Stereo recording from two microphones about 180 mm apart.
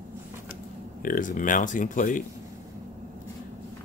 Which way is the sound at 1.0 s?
50° left (ahead or behind).